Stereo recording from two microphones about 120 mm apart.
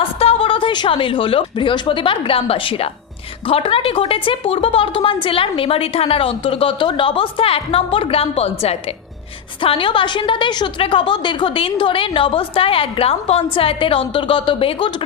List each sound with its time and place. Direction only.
0.0 s a woman's voice: 55° left (ahead or behind)
9.6 s a woman's voice: 50° left (ahead or behind)